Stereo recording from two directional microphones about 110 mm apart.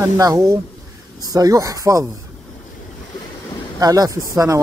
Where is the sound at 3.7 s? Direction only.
35° right (ahead or behind).